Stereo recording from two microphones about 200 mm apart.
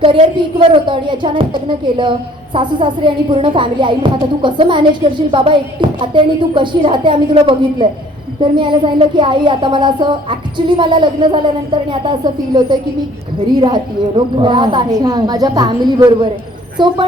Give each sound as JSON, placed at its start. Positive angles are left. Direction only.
{"t": 0.0, "sound": "speech", "side_deg": -25}
{"t": 14.3, "sound": "speech", "side_deg": -25}